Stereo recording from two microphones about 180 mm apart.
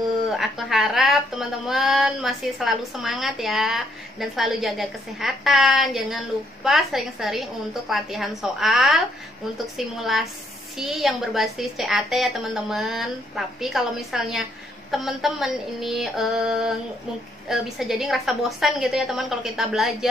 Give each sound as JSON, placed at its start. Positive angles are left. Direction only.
{"t": 0.3, "sound": "speech", "side_deg": 0}